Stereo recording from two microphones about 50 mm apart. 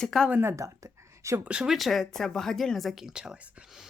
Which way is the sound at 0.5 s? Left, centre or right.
Right.